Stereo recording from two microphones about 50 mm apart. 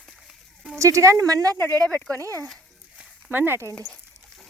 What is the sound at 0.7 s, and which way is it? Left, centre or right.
Speech, right.